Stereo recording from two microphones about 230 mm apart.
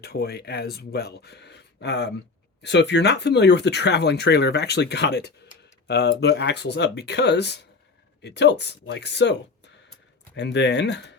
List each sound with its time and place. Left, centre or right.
0.0 s speech: left